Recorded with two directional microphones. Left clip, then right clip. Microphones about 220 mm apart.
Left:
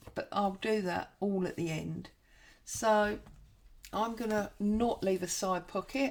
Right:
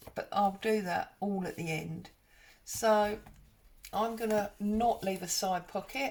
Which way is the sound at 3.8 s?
45° left (ahead or behind).